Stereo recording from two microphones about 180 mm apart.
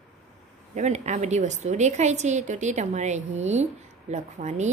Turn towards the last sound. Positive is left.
turn(degrees=-40)  # may be behind; listen again after turning